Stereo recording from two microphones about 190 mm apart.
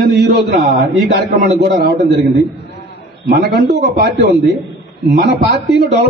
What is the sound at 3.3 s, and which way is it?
A man's voice, 55° right (ahead or behind).